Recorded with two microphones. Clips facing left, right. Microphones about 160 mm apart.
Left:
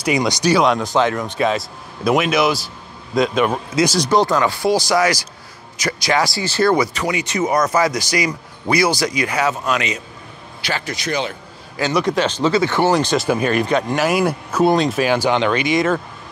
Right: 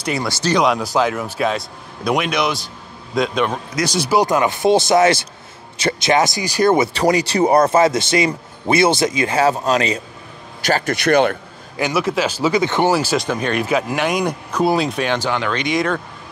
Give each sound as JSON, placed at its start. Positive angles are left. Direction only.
{"t": 0.0, "sound": "speech", "side_deg": 15}
{"t": 0.9, "sound": "speech", "side_deg": -5}
{"t": 4.0, "sound": "speech", "side_deg": -10}
{"t": 10.6, "sound": "speech", "side_deg": -45}
{"t": 11.0, "sound": "speech", "side_deg": -60}
{"t": 11.9, "sound": "speech", "side_deg": -5}
{"t": 12.9, "sound": "speech", "side_deg": -5}